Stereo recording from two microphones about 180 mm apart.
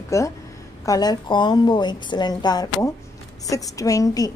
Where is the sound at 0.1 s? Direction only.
15° left (ahead or behind).